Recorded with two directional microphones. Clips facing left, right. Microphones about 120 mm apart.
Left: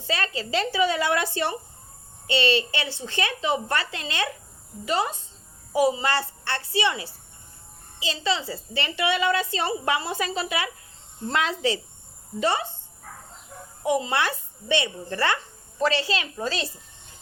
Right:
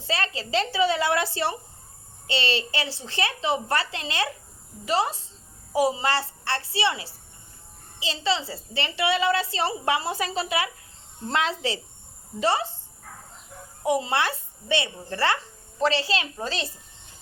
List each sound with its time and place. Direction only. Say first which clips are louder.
0.1 s a child's voice: even; 30° right (ahead or behind)
13.8 s a child's voice: even; 25° right (ahead or behind)